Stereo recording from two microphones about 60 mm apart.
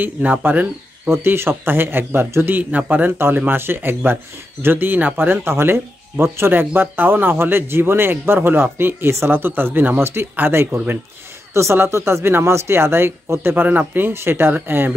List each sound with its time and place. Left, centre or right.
0.0 s speech: right